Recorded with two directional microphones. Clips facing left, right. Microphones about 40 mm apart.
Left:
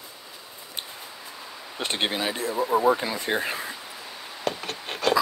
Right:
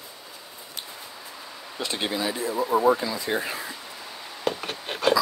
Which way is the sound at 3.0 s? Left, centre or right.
Left.